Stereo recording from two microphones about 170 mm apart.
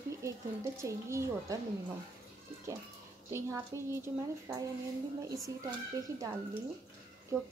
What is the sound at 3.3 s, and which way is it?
A woman's voice, 15° right (ahead or behind).